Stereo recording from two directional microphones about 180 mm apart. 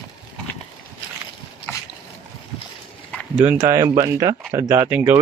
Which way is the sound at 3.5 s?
15° right (ahead or behind).